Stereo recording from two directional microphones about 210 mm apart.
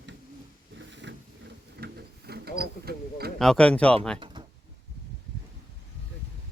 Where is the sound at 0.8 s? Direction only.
60° right (ahead or behind).